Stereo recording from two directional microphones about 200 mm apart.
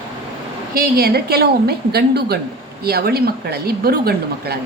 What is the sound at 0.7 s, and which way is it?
Speech, 50° right (ahead or behind).